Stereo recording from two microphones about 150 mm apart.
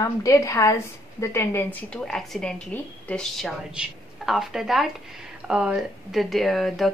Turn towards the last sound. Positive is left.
turn(degrees=0)  # may be behind; listen again after turning